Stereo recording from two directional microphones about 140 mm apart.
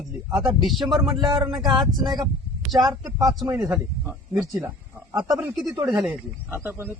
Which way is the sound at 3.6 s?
5° right (ahead or behind).